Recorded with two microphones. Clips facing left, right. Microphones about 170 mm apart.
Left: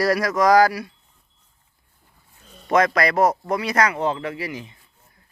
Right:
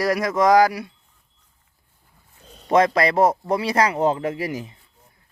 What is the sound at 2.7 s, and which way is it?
Speech, 25° right (ahead or behind).